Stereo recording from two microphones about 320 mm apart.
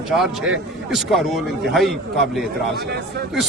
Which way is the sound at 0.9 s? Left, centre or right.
Centre.